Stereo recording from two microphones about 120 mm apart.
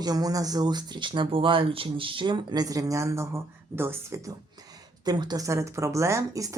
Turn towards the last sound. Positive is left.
turn(degrees=-25)  # may be behind; listen again after turning